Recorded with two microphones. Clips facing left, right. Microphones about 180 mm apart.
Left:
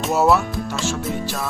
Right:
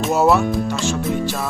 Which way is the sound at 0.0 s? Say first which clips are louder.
Right 2 dB; centre (ahead or behind).